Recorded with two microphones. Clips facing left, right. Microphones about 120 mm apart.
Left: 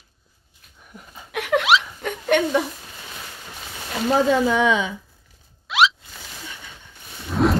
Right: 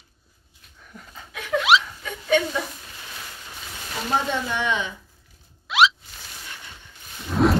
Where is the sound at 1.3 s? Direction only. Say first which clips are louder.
Left 5 dB; 80° left.